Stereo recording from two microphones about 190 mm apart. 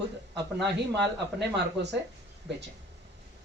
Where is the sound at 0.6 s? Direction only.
65° right (ahead or behind).